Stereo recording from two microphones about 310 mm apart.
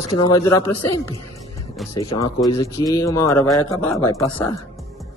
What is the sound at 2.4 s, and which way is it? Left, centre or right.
Speech, centre.